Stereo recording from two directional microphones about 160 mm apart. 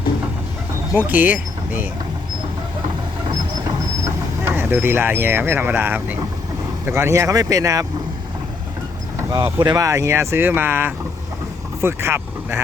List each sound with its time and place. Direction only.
0.9 s speech: 10° right (ahead or behind)
4.0 s speech: 15° right (ahead or behind)
9.1 s speech: 25° right (ahead or behind)